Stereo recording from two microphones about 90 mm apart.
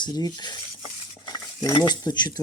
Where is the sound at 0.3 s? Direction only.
55° left (ahead or behind).